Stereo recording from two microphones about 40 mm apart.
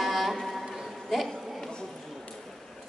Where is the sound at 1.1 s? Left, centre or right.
Centre.